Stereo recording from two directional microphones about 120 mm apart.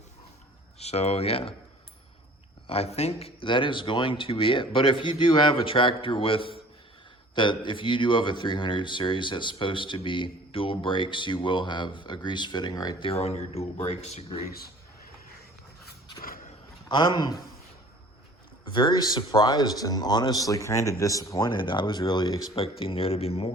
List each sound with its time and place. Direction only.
0.8 s speech: 60° left (ahead or behind)
2.6 s speech: 60° left (ahead or behind); by 13.1 s 35° left (ahead or behind)
13.1 s speech: 60° left (ahead or behind)
16.9 s speech: 35° left (ahead or behind)
18.7 s speech: 40° left (ahead or behind)
22.5 s speech: 50° left (ahead or behind)